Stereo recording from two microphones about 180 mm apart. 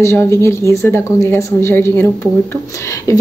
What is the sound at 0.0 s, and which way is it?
Speech, 15° left (ahead or behind).